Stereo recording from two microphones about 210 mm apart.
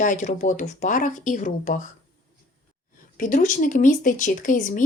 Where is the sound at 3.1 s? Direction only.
40° left (ahead or behind).